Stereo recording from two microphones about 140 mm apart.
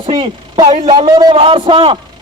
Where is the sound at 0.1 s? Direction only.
35° right (ahead or behind).